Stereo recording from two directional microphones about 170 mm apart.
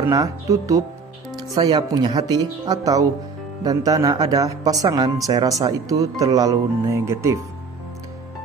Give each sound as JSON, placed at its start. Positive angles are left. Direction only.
{"t": 0.1, "sound": "speech", "side_deg": -20}